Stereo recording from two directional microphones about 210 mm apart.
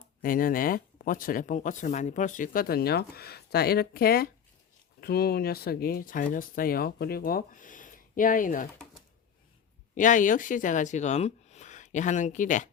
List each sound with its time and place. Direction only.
0.2 s speech: 40° left (ahead or behind)
9.9 s speech: 40° left (ahead or behind)